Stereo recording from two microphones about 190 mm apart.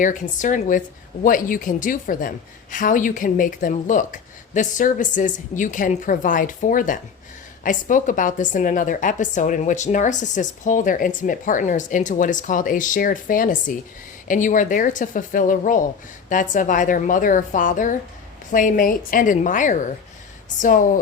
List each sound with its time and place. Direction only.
0.0 s a woman's voice: 45° left (ahead or behind)